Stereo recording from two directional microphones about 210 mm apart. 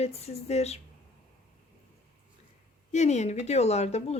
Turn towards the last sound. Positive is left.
turn(degrees=30)  # may be behind; listen again after turning